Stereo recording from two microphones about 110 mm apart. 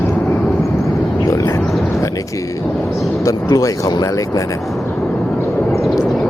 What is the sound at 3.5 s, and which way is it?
Speech, 35° left (ahead or behind).